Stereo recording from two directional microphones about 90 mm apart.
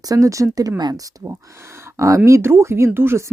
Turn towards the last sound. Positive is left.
turn(degrees=-25)  # may be behind; listen again after turning